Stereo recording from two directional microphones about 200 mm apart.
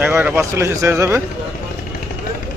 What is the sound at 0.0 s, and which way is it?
Speech, 10° right (ahead or behind).